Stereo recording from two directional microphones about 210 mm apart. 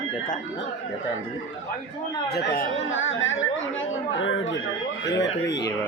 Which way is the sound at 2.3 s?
45° left (ahead or behind).